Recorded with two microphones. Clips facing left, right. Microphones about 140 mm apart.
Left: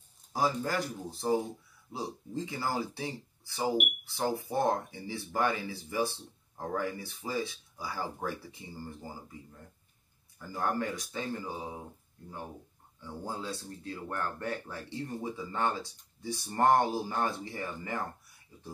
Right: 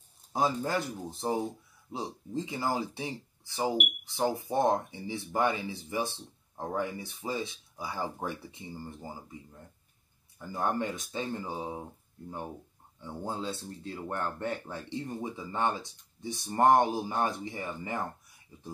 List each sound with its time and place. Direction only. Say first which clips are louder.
0.3 s speech: right 1 dB; 20° right (ahead or behind)
10.5 s speech: right 1 dB; 25° right (ahead or behind)
13.0 s speech: right 3 dB; 25° right (ahead or behind)